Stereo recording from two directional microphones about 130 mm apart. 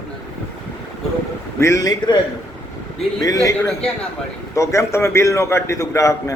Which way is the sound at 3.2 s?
25° left (ahead or behind).